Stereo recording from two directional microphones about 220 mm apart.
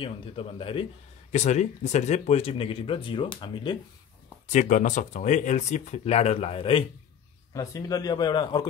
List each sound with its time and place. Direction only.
0.0 s speech: 25° left (ahead or behind)
4.5 s speech: 35° left (ahead or behind); by 8.6 s 20° left (ahead or behind)